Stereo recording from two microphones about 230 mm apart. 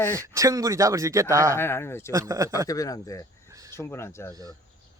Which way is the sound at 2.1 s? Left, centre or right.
Centre.